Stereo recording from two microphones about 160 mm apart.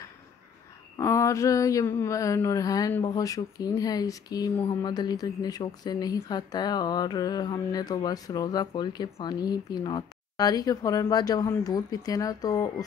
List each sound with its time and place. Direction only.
0.9 s speech: 20° left (ahead or behind)